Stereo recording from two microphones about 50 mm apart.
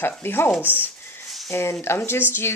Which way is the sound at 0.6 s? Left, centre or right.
Right.